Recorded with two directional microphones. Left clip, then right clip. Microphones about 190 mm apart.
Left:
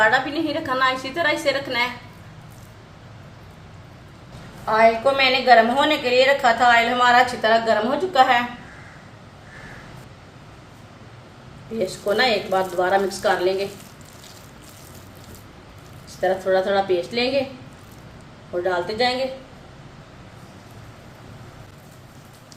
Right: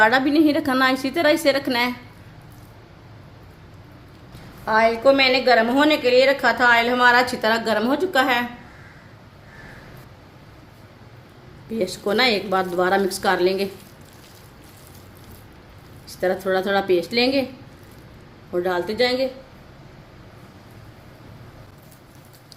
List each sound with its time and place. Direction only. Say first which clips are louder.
0.0 s a woman's voice: right 2 dB; 55° right (ahead or behind)
4.6 s a woman's voice: even; 55° right (ahead or behind)
11.8 s a woman's voice: even; 55° right (ahead or behind)
16.0 s a woman's voice: left 1 dB; 55° right (ahead or behind)
18.6 s a woman's voice: even; 55° right (ahead or behind)